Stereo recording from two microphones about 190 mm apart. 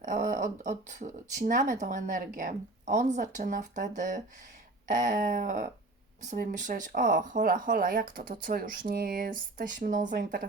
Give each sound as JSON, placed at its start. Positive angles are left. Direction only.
{"t": 0.0, "sound": "speech", "side_deg": -40}